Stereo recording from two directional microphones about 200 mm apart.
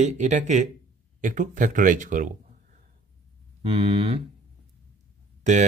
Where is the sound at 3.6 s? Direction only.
30° right (ahead or behind).